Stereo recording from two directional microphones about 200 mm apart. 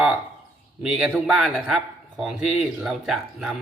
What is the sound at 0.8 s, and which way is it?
A man's voice, 5° right (ahead or behind).